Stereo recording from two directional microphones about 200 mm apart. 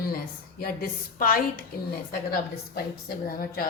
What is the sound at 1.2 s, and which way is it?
Speech, 45° left (ahead or behind).